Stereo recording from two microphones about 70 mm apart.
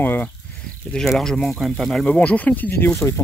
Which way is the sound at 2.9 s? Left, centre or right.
Left.